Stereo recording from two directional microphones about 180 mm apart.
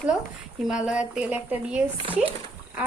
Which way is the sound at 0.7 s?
5° right (ahead or behind).